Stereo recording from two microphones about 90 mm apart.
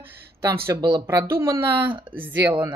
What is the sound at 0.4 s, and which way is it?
Speech, 30° right (ahead or behind).